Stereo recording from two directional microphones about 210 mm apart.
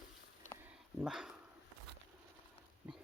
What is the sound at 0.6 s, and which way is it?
Dog, centre (ahead or behind).